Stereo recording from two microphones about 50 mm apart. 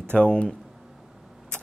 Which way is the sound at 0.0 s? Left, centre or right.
Left.